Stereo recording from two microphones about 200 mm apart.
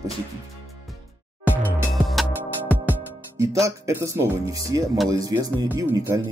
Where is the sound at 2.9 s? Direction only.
15° right (ahead or behind).